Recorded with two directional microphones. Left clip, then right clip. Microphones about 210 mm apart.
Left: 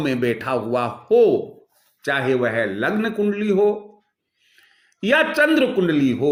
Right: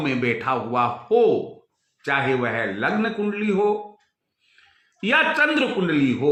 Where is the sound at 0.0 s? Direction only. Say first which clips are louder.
Left 1 dB; 45° left (ahead or behind).